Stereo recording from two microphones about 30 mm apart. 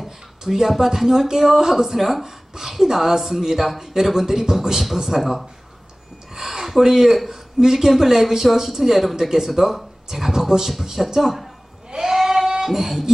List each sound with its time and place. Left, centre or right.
0.4 s speech: centre
2.0 s speech: centre
2.2 s a sound: centre
2.7 s speech: centre
6.7 s speech: centre
11.9 s sheep: centre
12.6 s speech: centre